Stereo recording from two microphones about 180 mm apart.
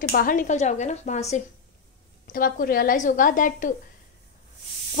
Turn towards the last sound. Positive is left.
turn(degrees=50)  # may be behind; listen again after turning